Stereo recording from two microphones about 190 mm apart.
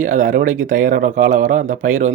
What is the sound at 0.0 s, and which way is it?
Speech, 40° right (ahead or behind).